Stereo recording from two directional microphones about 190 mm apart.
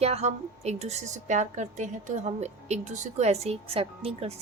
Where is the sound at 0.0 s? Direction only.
35° right (ahead or behind).